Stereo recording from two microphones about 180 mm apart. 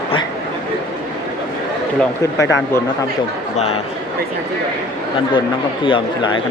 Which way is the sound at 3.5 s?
35° left (ahead or behind).